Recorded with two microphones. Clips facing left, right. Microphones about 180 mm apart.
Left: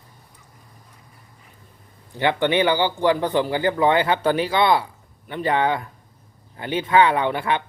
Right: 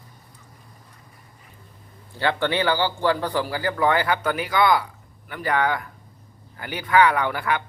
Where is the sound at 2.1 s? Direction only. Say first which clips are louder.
Left 3 dB; 15° left (ahead or behind).